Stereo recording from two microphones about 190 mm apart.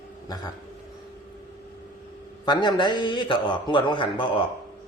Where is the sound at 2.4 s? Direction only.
20° left (ahead or behind).